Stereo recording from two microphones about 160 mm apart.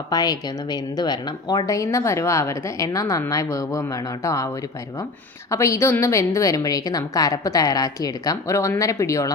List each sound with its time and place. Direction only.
0.1 s speech: 25° left (ahead or behind)
5.5 s speech: 20° left (ahead or behind)